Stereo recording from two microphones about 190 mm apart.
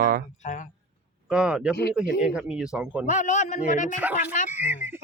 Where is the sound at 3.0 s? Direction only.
40° left (ahead or behind).